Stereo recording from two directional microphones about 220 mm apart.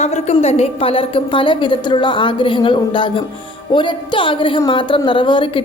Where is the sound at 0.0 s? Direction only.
30° left (ahead or behind).